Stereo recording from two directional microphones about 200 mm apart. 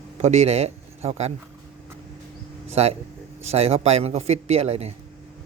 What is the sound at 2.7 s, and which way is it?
A man's voice, 30° right (ahead or behind).